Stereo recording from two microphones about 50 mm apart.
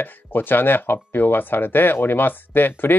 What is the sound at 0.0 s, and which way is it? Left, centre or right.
Speech, left.